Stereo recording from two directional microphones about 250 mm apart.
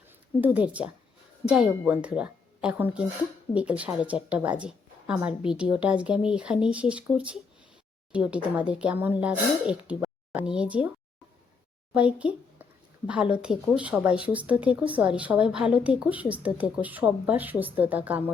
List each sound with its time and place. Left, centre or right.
0.4 s speech: centre
11.9 s speech: centre